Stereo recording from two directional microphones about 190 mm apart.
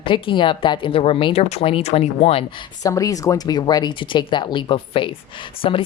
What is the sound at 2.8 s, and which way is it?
A woman's voice, 15° left (ahead or behind).